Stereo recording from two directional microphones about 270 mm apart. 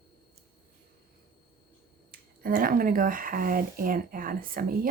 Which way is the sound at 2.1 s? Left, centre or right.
Right.